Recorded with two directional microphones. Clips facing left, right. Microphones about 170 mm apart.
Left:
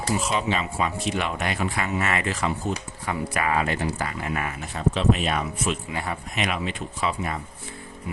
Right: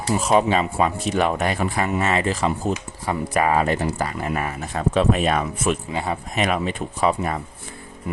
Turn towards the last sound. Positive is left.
turn(degrees=-45)  # may be behind; listen again after turning